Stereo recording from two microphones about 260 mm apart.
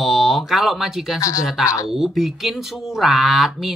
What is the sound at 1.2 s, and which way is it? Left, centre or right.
Speech, centre.